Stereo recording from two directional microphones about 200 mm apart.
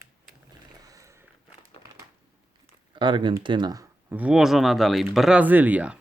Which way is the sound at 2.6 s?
25° right (ahead or behind).